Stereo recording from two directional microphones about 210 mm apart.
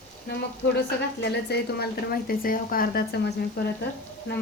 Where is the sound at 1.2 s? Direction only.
50° left (ahead or behind).